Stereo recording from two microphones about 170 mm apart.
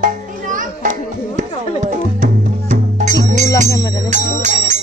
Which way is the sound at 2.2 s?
50° right (ahead or behind).